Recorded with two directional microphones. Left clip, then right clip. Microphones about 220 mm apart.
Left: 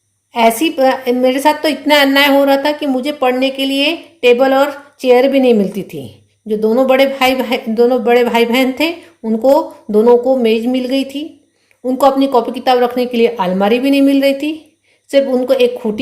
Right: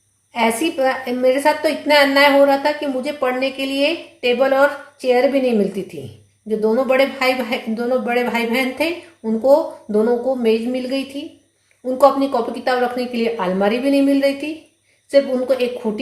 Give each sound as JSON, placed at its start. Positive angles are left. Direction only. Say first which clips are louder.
{"t": 0.3, "sound": "a woman's voice", "louder": "left 6 dB", "side_deg": 45}